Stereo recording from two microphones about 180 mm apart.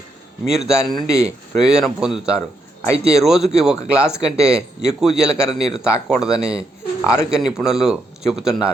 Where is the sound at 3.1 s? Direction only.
Centre (ahead or behind).